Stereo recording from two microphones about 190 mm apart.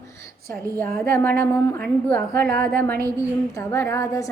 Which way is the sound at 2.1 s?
55° right (ahead or behind).